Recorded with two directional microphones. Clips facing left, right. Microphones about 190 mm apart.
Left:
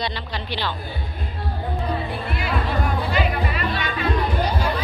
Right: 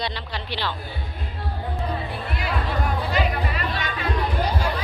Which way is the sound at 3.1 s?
40° right (ahead or behind).